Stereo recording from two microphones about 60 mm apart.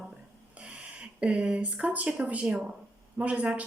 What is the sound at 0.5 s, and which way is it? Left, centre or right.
A woman's voice, right.